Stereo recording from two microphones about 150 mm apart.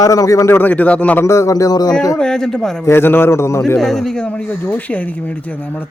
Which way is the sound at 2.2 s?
5° left (ahead or behind).